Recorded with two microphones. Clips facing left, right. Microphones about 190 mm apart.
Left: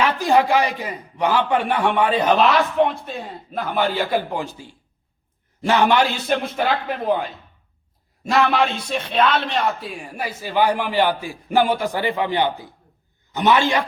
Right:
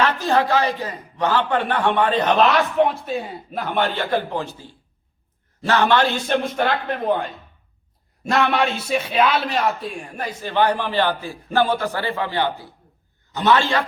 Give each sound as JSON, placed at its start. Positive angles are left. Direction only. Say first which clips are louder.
{"t": 0.0, "sound": "a man's voice", "louder": "left 2 dB", "side_deg": 10}
{"t": 2.7, "sound": "a man's voice", "louder": "right 1 dB", "side_deg": 0}